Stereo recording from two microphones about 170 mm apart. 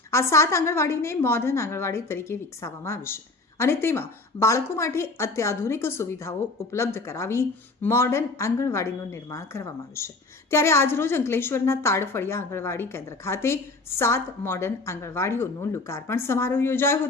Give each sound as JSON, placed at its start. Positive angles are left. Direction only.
{"t": 0.1, "sound": "a woman's voice", "side_deg": 15}